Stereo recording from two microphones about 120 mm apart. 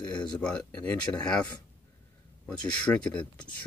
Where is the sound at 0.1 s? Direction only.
10° left (ahead or behind).